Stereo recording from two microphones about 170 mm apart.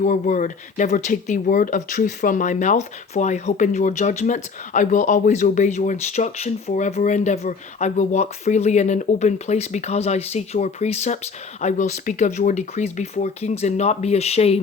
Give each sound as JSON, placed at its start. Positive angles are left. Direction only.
{"t": 0.0, "sound": "speech", "side_deg": 50}